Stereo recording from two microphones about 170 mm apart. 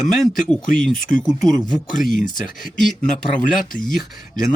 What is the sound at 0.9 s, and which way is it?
Speech, 55° left (ahead or behind).